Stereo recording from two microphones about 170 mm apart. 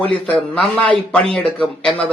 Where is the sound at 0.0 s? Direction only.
5° left (ahead or behind).